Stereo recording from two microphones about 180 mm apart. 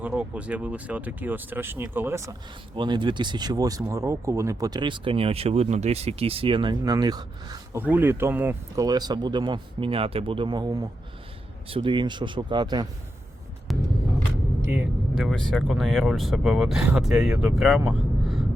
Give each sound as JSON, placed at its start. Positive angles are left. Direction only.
{"t": 0.0, "sound": "speech", "side_deg": -10}
{"t": 2.7, "sound": "speech", "side_deg": -25}
{"t": 7.8, "sound": "speech", "side_deg": -10}
{"t": 13.7, "sound": "vehicle", "side_deg": 0}
{"t": 14.7, "sound": "speech", "side_deg": -5}